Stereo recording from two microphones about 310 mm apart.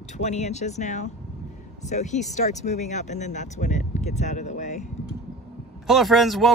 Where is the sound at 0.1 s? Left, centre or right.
Left.